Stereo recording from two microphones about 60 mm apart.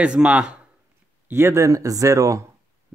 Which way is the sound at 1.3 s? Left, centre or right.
Right.